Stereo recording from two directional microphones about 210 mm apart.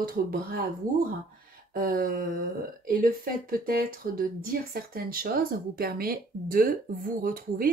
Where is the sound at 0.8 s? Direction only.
40° right (ahead or behind).